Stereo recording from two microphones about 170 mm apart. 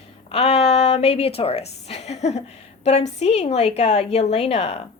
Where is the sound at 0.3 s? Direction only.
35° left (ahead or behind).